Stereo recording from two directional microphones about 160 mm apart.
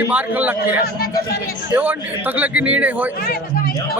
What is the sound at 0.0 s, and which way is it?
A man's voice, 10° right (ahead or behind).